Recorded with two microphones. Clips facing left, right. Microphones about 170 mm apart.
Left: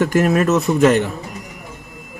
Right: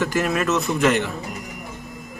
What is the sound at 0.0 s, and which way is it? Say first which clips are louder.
A man's voice: left 6 dB; 50° left (ahead or behind).